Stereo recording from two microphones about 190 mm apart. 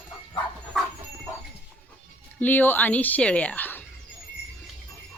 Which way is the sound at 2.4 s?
10° left (ahead or behind).